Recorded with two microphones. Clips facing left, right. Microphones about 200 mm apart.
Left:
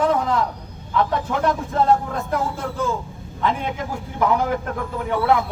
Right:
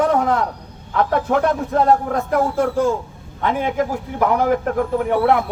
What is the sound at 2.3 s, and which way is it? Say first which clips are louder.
Speech: right 8 dB; 55° right (ahead or behind).